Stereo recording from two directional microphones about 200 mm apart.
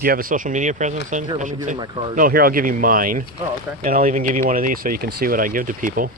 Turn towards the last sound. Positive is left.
turn(degrees=-45)  # may be behind; listen again after turning